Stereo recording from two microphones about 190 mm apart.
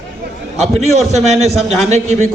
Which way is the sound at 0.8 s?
35° right (ahead or behind).